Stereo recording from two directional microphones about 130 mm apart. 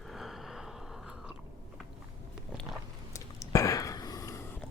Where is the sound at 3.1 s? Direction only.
25° left (ahead or behind).